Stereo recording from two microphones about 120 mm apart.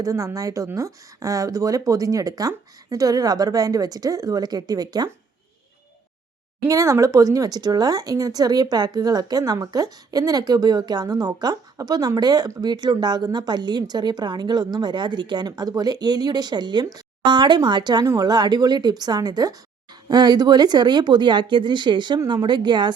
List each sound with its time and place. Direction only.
0.0 s a woman's voice: 30° right (ahead or behind)
6.7 s speech: 25° right (ahead or behind)